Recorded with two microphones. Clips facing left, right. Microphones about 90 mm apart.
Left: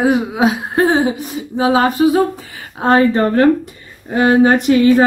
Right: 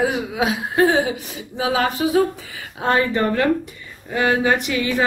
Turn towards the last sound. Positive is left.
turn(degrees=40)  # may be behind; listen again after turning